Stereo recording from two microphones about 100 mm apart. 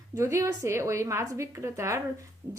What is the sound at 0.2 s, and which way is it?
A woman's voice, 30° right (ahead or behind).